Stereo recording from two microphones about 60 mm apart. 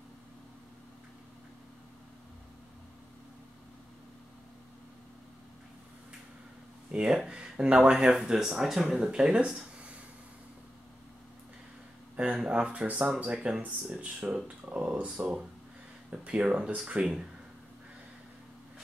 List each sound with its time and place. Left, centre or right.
6.9 s speech: centre
12.4 s speech: right